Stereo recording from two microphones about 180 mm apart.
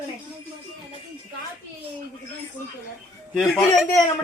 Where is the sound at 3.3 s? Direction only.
5° left (ahead or behind).